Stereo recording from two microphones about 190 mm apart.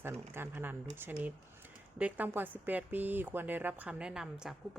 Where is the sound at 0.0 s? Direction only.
10° right (ahead or behind).